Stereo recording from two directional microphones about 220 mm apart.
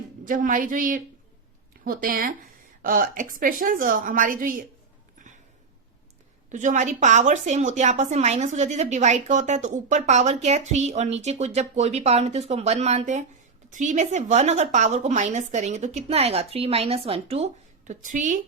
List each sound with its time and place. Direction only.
0.3 s a woman's voice: 40° right (ahead or behind)
6.5 s a woman's voice: 35° right (ahead or behind)